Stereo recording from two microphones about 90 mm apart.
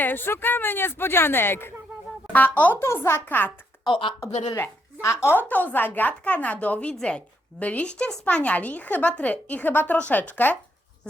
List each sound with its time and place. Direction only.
0.0 s a child's voice: 25° left (ahead or behind)
2.8 s a child's voice: 30° left (ahead or behind)
3.8 s a woman's voice: 65° left (ahead or behind)
4.5 s a child's voice: 30° left (ahead or behind)